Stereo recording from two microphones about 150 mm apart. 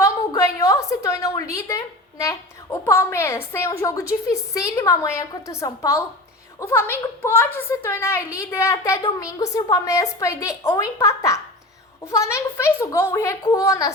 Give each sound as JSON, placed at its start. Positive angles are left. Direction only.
{"t": 0.0, "sound": "a woman's voice", "side_deg": 20}